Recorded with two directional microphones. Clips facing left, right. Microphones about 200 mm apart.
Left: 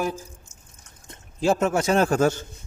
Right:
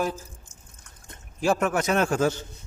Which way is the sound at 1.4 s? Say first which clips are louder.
Left 2 dB; 25° left (ahead or behind).